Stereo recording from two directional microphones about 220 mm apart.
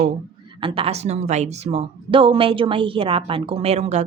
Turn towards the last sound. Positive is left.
turn(degrees=-30)  # may be behind; listen again after turning